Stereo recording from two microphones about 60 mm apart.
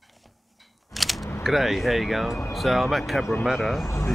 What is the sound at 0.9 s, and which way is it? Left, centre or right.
Speech, centre.